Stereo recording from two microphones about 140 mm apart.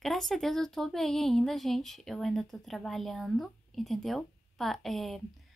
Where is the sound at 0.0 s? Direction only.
Centre (ahead or behind).